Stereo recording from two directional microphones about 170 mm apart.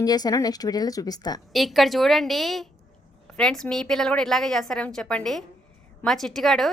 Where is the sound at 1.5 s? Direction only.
Centre (ahead or behind).